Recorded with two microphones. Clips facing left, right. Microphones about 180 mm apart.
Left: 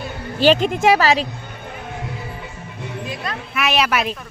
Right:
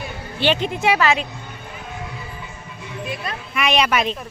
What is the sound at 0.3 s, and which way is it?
Speech, 40° left (ahead or behind).